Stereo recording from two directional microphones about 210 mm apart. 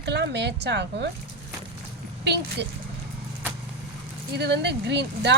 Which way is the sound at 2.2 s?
55° right (ahead or behind).